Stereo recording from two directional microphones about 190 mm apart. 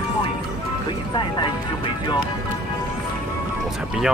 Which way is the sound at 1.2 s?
25° left (ahead or behind).